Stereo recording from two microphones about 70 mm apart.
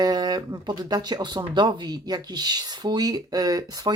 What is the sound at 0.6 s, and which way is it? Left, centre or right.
Speech, right.